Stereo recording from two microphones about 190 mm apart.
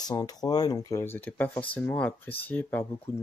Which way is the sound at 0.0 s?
20° left (ahead or behind).